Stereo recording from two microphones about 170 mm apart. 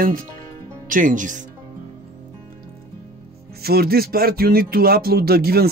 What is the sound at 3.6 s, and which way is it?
Speech, 65° right (ahead or behind).